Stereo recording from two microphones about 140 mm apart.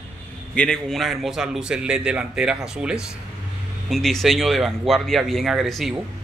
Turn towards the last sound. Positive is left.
turn(degrees=0)  # may be behind; listen again after turning